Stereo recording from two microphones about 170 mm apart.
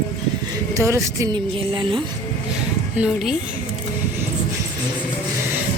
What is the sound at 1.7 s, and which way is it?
Speech, 30° right (ahead or behind).